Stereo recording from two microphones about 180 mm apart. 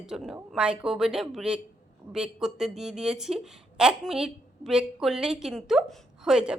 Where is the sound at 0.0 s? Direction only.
Centre (ahead or behind).